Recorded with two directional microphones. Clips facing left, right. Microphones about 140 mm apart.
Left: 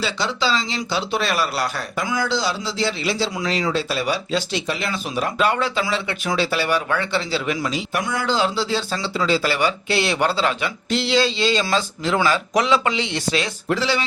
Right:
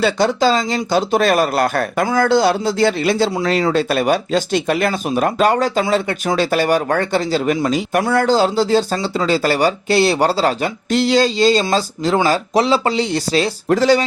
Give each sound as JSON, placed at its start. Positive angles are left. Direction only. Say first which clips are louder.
{"t": 0.0, "sound": "speech", "louder": "right 8 dB", "side_deg": -50}
{"t": 8.0, "sound": "a man's voice", "louder": "right 9 dB", "side_deg": -60}
{"t": 8.3, "sound": "speech", "louder": "right 5 dB", "side_deg": -40}